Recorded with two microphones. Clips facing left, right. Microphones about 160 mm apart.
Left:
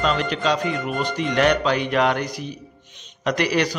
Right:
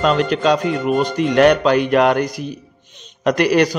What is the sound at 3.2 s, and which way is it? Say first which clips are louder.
Speech: right 6 dB; 45° right (ahead or behind).